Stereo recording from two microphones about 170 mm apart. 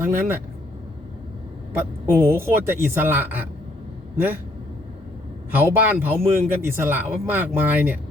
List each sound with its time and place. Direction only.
0.0 s a man's voice: 15° right (ahead or behind)
1.7 s a man's voice: 10° right (ahead or behind)
5.5 s a man's voice: 10° right (ahead or behind)